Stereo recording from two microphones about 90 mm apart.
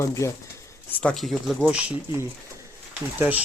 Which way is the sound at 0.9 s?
15° left (ahead or behind).